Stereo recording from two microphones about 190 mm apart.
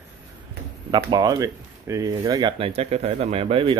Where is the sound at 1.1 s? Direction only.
20° right (ahead or behind).